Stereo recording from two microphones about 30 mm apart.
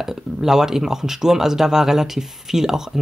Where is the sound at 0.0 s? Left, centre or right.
Centre.